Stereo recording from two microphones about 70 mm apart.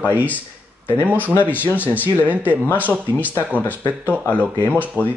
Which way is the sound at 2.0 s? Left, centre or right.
Left.